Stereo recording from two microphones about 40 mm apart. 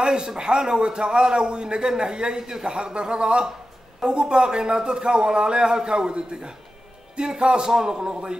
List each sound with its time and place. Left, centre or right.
0.0 s a man's voice: right